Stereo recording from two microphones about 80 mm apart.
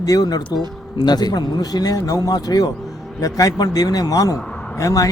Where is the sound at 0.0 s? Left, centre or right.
Left.